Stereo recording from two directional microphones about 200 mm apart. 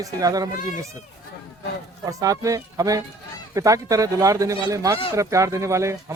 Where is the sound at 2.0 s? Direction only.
15° right (ahead or behind).